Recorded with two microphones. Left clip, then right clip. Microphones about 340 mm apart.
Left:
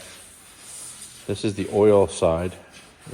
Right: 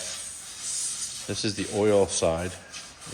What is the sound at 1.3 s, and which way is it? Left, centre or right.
Speech, centre.